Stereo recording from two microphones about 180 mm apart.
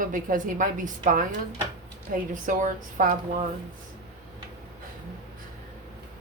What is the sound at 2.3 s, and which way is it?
Speech, 45° right (ahead or behind).